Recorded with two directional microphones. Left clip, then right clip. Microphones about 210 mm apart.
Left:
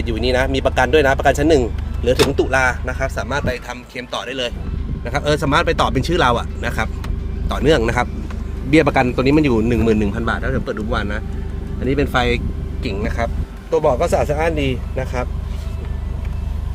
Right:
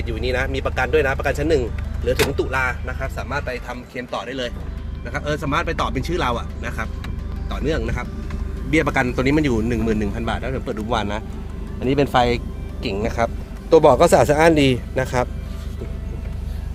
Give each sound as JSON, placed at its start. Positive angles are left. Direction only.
{"t": 0.0, "sound": "speech", "side_deg": 10}
{"t": 7.4, "sound": "speech", "side_deg": 30}
{"t": 8.7, "sound": "speech", "side_deg": 10}
{"t": 10.4, "sound": "speech", "side_deg": -20}